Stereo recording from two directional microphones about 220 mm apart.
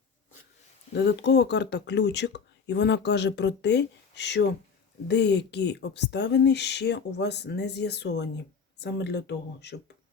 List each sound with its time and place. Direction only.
0.9 s speech: 50° left (ahead or behind)